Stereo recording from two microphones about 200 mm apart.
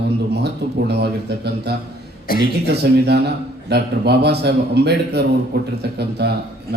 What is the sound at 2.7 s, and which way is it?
A man's voice, 55° right (ahead or behind).